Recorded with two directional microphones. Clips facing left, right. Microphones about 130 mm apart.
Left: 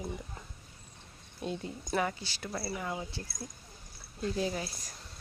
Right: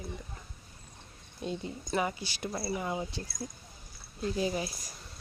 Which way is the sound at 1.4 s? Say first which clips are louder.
Right 1 dB; centre (ahead or behind).